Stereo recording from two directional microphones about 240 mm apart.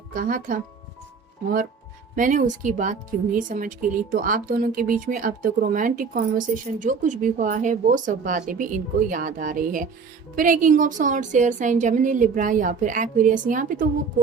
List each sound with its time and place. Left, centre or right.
0.1 s a woman's voice: right
2.1 s a woman's voice: right